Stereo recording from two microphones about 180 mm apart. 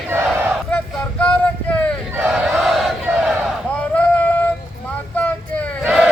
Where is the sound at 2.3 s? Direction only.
Centre (ahead or behind).